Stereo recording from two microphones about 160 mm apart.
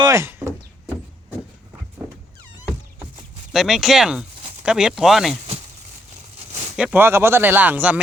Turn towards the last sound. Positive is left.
turn(degrees=-10)  # may be behind; listen again after turning